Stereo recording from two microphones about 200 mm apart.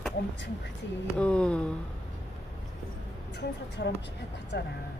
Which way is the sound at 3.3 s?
60° left (ahead or behind).